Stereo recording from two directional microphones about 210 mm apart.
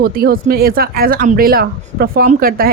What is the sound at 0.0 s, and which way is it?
Speech, 45° right (ahead or behind).